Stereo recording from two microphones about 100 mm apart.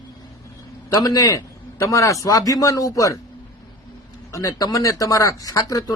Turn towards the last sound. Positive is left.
turn(degrees=35)  # may be behind; listen again after turning